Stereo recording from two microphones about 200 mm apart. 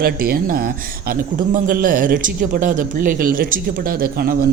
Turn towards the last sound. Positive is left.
turn(degrees=-50)  # may be behind; listen again after turning